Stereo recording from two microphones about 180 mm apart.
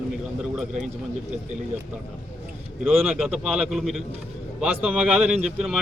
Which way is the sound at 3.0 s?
Centre (ahead or behind).